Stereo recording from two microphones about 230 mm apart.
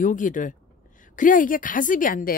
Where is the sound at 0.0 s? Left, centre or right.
Left.